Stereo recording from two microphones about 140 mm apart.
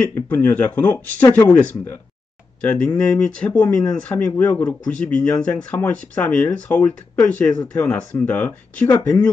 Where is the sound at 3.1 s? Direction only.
10° left (ahead or behind).